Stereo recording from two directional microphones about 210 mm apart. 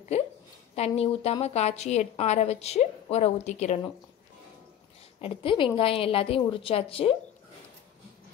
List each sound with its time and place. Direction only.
0.1 s a sound: 30° left (ahead or behind)
0.7 s a woman's voice: 30° left (ahead or behind)
5.2 s a woman's voice: 25° left (ahead or behind)